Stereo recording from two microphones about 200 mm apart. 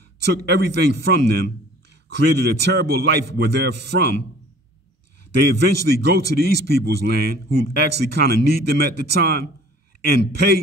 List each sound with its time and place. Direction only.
0.2 s a man's voice: 55° right (ahead or behind)
5.4 s a man's voice: 55° right (ahead or behind)